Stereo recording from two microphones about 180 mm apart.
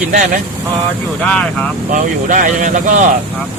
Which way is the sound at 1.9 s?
45° right (ahead or behind).